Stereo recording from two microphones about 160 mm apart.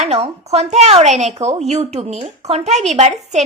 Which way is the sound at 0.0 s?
40° right (ahead or behind).